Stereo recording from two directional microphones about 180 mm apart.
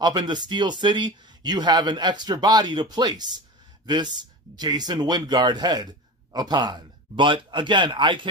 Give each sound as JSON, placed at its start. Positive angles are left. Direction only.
{"t": 0.0, "sound": "speech", "side_deg": -25}